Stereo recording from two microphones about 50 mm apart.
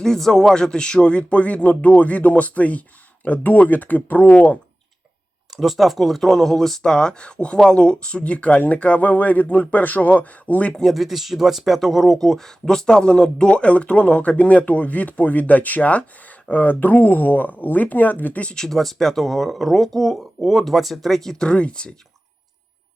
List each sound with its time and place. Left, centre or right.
0.0 s speech: centre; by 4.5 s left
5.5 s speech: centre; by 10.8 s left
10.9 s speech: centre; by 18.4 s left
18.5 s speech: centre
21.4 s speech: left